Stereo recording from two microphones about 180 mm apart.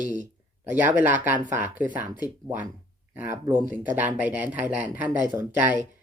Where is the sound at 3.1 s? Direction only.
10° right (ahead or behind).